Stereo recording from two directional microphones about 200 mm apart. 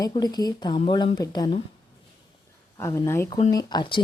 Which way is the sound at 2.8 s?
15° left (ahead or behind).